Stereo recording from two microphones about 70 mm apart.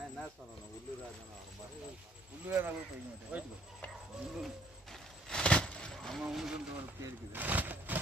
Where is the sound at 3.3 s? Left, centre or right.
Right.